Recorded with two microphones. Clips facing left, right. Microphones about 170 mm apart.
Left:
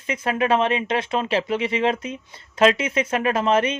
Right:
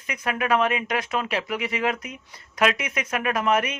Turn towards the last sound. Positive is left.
turn(degrees=25)  # may be behind; listen again after turning